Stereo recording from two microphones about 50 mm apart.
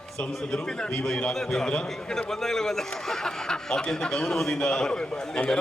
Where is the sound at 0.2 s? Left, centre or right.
Centre.